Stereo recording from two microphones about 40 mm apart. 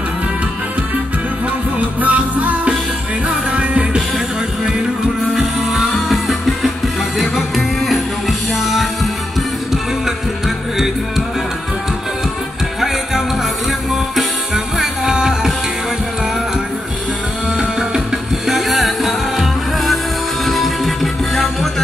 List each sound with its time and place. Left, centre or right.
1.8 s music: right
3.3 s music: right
5.3 s music: centre
14.8 s music: centre
17.6 s music: centre
18.5 s music: centre